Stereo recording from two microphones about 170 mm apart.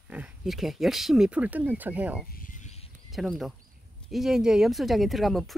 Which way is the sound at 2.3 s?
50° left (ahead or behind).